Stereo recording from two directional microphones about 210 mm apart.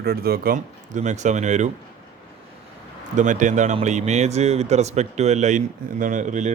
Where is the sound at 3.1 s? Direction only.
35° right (ahead or behind).